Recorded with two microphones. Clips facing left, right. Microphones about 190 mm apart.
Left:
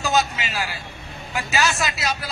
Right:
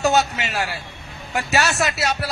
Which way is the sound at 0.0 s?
65° right (ahead or behind).